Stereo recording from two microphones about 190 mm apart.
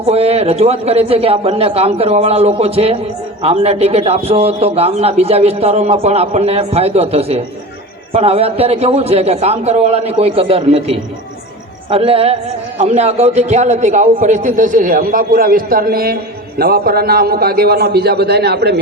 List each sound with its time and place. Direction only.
0.1 s a man's voice: 35° right (ahead or behind); by 18.8 s 60° right (ahead or behind)